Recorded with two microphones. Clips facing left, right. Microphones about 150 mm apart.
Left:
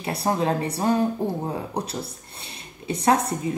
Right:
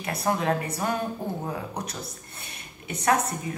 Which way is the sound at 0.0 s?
30° left (ahead or behind).